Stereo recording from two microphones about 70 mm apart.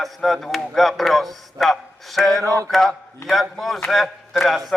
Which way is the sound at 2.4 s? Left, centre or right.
Right.